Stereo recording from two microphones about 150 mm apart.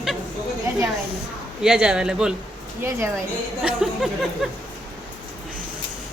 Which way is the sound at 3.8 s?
5° right (ahead or behind).